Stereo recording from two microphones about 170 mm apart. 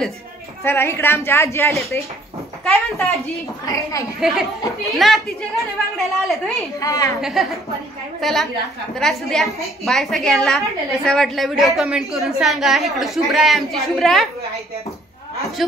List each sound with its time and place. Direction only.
0.7 s speech: 15° left (ahead or behind)
2.6 s a woman's voice: centre (ahead or behind)
4.2 s a woman's voice: 5° right (ahead or behind)
6.8 s a woman's voice: 20° left (ahead or behind)
7.2 s a woman's voice: centre (ahead or behind)